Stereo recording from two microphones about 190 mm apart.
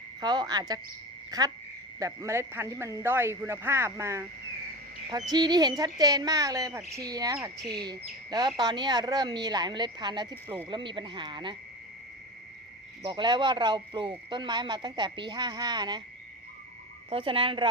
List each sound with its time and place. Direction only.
0.2 s speech: 20° right (ahead or behind)
13.0 s speech: 25° right (ahead or behind)
17.1 s speech: 30° right (ahead or behind)